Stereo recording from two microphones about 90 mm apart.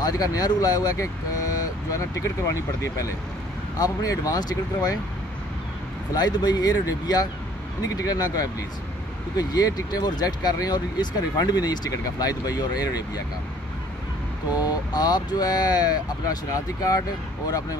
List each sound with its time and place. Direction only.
0.0 s speech: 45° left (ahead or behind)
6.1 s speech: 50° left (ahead or behind)
14.6 s speech: 50° left (ahead or behind)